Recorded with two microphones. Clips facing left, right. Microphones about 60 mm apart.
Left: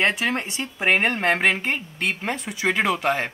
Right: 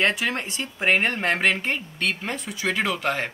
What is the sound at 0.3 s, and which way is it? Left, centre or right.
Speech, centre.